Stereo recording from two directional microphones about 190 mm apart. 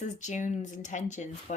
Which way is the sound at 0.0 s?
40° left (ahead or behind).